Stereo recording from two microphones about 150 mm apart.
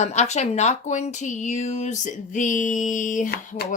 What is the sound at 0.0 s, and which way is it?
Speech, 50° left (ahead or behind).